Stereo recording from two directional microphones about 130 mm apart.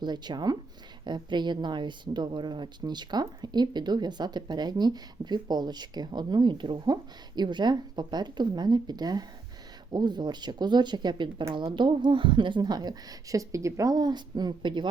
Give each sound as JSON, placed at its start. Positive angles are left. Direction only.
{"t": 0.0, "sound": "a woman's voice", "side_deg": -35}